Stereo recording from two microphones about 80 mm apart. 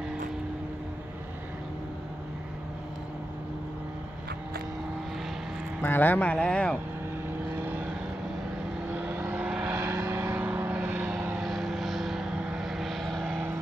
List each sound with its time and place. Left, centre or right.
5.9 s speech: left
7.3 s vehicle: right
9.8 s vehicle: right; by 11.4 s centre
11.4 s vehicle: centre
12.6 s vehicle: centre